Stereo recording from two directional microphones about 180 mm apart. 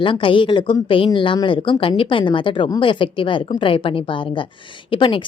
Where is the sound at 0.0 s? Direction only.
30° left (ahead or behind).